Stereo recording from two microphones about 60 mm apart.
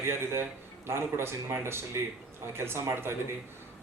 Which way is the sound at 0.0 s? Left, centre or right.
Right.